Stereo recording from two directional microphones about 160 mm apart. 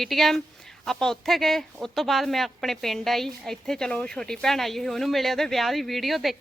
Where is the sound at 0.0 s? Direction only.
Centre (ahead or behind).